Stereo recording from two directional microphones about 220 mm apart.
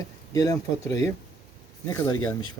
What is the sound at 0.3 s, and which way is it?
Speech, 15° left (ahead or behind).